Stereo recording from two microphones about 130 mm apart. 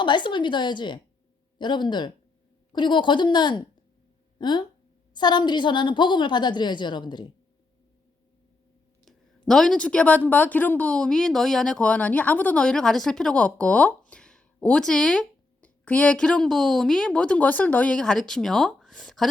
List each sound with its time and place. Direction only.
0.0 s a woman's voice: 35° left (ahead or behind)
9.5 s speech: 5° left (ahead or behind)